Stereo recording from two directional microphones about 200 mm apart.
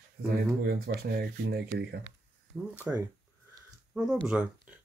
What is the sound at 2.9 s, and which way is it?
Speech, 5° right (ahead or behind).